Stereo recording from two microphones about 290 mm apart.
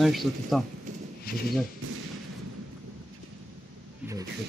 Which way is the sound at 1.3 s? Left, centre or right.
Left.